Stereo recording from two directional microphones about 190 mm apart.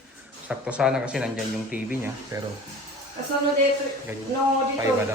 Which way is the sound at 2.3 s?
20° right (ahead or behind).